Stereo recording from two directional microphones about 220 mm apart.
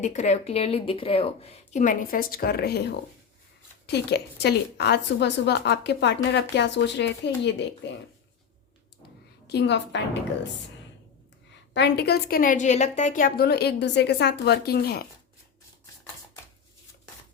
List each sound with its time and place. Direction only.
0.0 s a woman's voice: 35° left (ahead or behind); by 7.9 s 50° left (ahead or behind)
9.5 s a woman's voice: 50° left (ahead or behind)
11.7 s a woman's voice: 50° left (ahead or behind)